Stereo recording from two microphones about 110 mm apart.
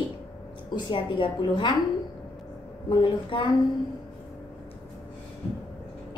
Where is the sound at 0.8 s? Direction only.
50° left (ahead or behind).